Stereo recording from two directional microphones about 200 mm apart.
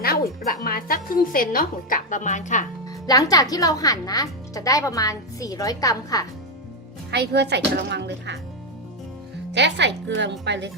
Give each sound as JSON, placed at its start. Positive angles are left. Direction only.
{"t": 0.0, "sound": "speech", "side_deg": 50}
{"t": 3.1, "sound": "speech", "side_deg": 20}
{"t": 7.1, "sound": "speech", "side_deg": -55}
{"t": 9.5, "sound": "speech", "side_deg": -60}